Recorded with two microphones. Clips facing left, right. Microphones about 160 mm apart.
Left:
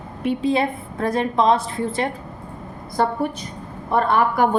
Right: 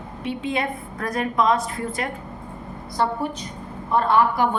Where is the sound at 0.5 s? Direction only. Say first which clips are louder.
Left 5 dB; 30° left (ahead or behind).